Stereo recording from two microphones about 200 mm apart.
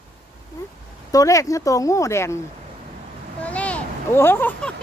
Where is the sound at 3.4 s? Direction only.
5° left (ahead or behind).